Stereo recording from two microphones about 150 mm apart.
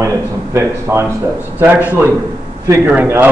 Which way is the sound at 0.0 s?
20° right (ahead or behind).